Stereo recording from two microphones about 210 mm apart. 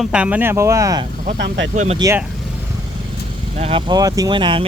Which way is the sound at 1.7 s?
35° right (ahead or behind).